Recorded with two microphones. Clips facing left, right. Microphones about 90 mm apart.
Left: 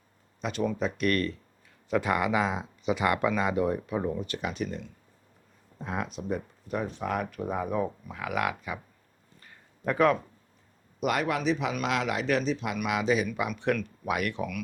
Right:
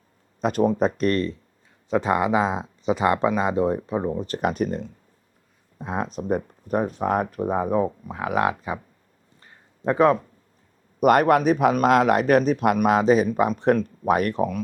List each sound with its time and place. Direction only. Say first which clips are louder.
0.4 s speech: right 9 dB; 40° right (ahead or behind)
4.3 s speech: right 9 dB; 45° right (ahead or behind)
5.8 s speech: right 5 dB; 25° right (ahead or behind)
6.1 s speech: right 7 dB; 45° right (ahead or behind)
9.4 s a sound: right 6 dB; 25° right (ahead or behind)
11.0 s speech: right 10 dB; 50° right (ahead or behind); by 14.6 s 35° right (ahead or behind)